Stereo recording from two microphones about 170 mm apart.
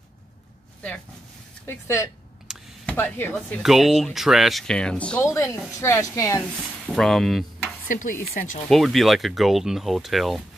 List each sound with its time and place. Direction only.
1.7 s a woman's voice: 15° left (ahead or behind)
2.4 s a sound: 10° left (ahead or behind)
3.3 s a woman's voice: 10° left (ahead or behind)
5.2 s a woman's voice: 15° left (ahead or behind)
6.9 s speech: centre (ahead or behind)
7.9 s speech: 50° left (ahead or behind)
8.6 s speech: centre (ahead or behind)